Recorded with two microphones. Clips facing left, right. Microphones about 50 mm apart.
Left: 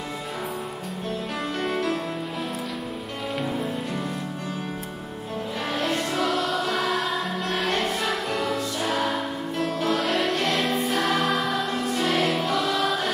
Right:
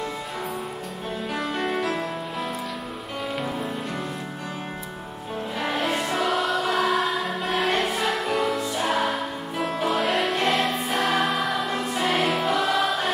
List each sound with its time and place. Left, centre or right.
1.4 s music: centre
3.3 s music: centre
5.8 s music: centre
10.8 s choir: centre
11.1 s music: centre